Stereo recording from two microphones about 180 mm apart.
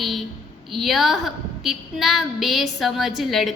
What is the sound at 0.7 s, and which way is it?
A woman's voice, centre (ahead or behind).